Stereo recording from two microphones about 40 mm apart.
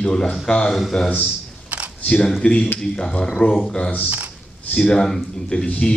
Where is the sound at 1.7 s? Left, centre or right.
Right.